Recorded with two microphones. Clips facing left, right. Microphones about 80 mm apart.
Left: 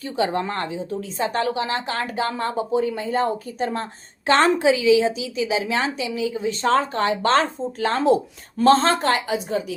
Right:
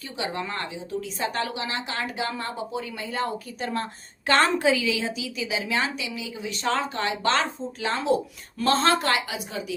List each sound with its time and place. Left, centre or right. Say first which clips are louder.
0.0 s a woman's voice: left 8 dB; left